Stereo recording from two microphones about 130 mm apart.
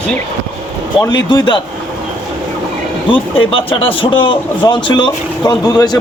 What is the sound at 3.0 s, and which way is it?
Speech, 40° left (ahead or behind).